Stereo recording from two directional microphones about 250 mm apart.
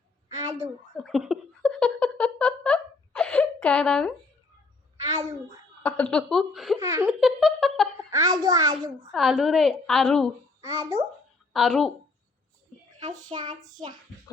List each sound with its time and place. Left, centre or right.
1.0 s a sound: centre
5.8 s a woman's voice: centre
6.7 s a sound: centre
8.1 s a child's voice: centre
9.1 s a woman's voice: centre
10.6 s a child's voice: centre
11.5 s a woman's voice: centre
13.3 s a child's voice: right